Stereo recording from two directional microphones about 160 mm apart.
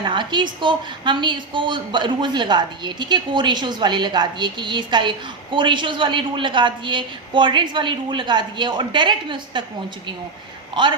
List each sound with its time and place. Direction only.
0.0 s a woman's voice: 30° right (ahead or behind)
10.8 s a woman's voice: 30° right (ahead or behind)